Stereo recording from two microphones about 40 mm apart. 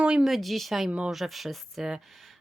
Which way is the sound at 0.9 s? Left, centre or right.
Right.